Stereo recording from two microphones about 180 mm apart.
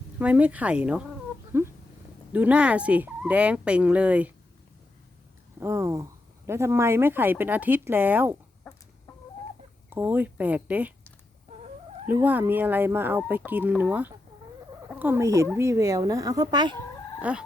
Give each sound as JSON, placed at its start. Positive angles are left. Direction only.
{"t": 0.2, "sound": "speech", "side_deg": -5}
{"t": 1.5, "sound": "cat", "side_deg": -15}
{"t": 2.3, "sound": "speech", "side_deg": -10}
{"t": 5.5, "sound": "speech", "side_deg": -15}
{"t": 9.9, "sound": "speech", "side_deg": -10}
{"t": 12.0, "sound": "speech", "side_deg": -10}
{"t": 17.2, "sound": "speech", "side_deg": -5}